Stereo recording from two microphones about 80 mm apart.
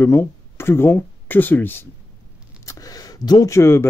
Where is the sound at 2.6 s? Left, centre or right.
Left.